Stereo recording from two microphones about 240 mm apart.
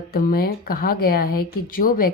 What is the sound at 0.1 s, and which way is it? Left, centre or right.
A woman's voice, left.